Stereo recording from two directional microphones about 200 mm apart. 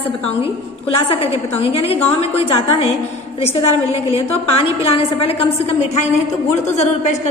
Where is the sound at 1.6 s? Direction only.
30° left (ahead or behind).